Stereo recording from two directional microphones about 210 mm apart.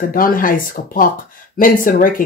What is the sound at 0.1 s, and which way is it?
Speech, 40° left (ahead or behind).